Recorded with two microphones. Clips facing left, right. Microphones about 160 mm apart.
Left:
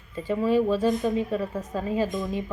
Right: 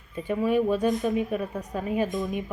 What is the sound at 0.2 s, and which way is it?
Speech, 15° right (ahead or behind).